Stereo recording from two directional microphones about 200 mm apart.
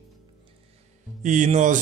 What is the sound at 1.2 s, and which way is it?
Speech, 40° right (ahead or behind).